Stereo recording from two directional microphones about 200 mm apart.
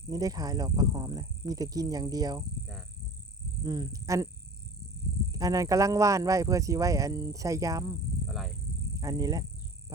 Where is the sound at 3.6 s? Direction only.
20° right (ahead or behind).